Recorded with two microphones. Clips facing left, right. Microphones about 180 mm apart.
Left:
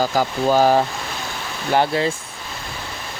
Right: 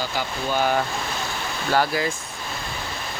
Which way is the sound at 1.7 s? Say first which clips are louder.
Left 4 dB; 25° left (ahead or behind).